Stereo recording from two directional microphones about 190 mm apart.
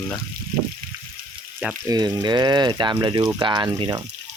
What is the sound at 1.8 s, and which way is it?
Speech, 20° right (ahead or behind).